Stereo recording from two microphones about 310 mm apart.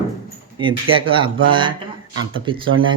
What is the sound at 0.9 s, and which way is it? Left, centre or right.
Speech, centre.